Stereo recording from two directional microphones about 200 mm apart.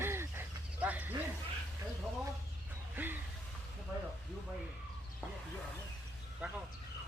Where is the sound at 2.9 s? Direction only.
10° right (ahead or behind).